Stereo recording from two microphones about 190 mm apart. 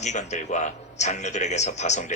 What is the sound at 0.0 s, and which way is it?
Speech, 40° left (ahead or behind).